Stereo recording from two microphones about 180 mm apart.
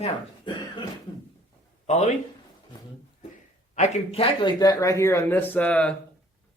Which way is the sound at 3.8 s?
35° left (ahead or behind).